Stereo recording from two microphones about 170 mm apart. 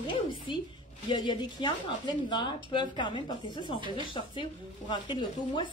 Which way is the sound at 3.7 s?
30° right (ahead or behind).